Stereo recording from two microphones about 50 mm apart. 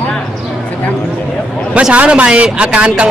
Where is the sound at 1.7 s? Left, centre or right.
Right.